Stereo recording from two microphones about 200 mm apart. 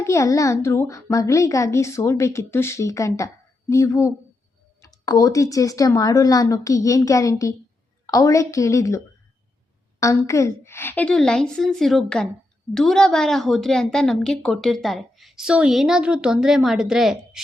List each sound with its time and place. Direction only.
0.0 s a child's voice: 15° left (ahead or behind)
10.0 s a woman's voice: 15° left (ahead or behind); by 17.4 s centre (ahead or behind)